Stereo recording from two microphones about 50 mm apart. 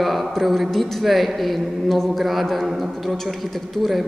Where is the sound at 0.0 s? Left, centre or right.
Centre.